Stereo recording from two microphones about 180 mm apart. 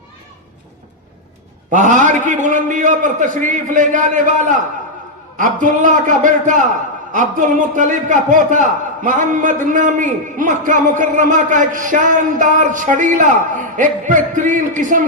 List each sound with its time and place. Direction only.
1.7 s a man's voice: 45° right (ahead or behind)